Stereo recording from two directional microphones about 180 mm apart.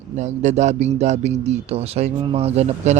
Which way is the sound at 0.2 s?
40° right (ahead or behind).